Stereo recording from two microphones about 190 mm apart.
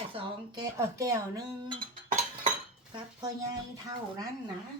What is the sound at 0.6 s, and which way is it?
Speech, 15° right (ahead or behind).